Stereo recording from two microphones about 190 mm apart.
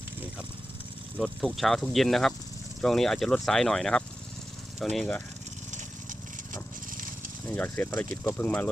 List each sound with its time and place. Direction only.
1.2 s speech: centre (ahead or behind)
5.7 s a sound: 45° right (ahead or behind)
7.4 s speech: 10° left (ahead or behind)